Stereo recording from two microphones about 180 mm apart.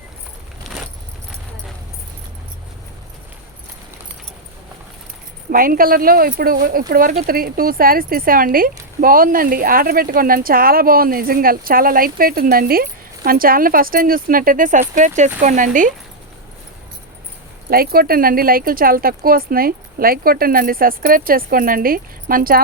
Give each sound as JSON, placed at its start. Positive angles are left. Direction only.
{"t": 0.7, "sound": "keys jangling", "side_deg": 0}
{"t": 5.5, "sound": "speech", "side_deg": -50}
{"t": 17.7, "sound": "speech", "side_deg": -55}